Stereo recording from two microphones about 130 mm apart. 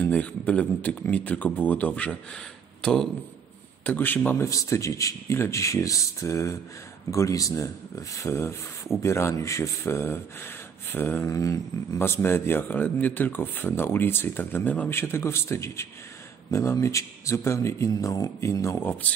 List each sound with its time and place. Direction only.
0.0 s speech: 10° left (ahead or behind)
3.8 s speech: 15° left (ahead or behind)
4.5 s a man's voice: 25° left (ahead or behind)